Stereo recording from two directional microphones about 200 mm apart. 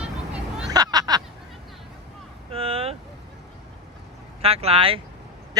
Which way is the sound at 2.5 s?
30° right (ahead or behind).